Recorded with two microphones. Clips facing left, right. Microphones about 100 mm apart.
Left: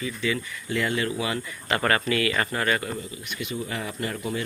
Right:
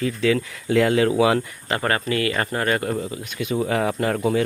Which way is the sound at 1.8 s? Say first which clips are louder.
Right 2 dB; 30° right (ahead or behind).